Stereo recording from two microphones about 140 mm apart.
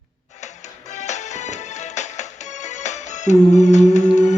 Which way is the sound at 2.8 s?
55° left (ahead or behind).